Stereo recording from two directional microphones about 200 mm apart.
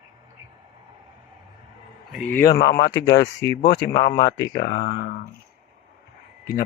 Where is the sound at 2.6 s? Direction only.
55° left (ahead or behind).